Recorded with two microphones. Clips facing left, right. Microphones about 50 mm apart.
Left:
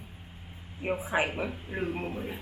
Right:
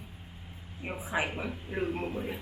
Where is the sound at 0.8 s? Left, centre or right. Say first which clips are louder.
Left 7 dB; centre.